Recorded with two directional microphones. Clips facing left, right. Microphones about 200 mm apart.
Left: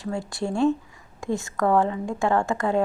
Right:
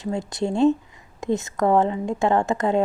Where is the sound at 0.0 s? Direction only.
20° right (ahead or behind).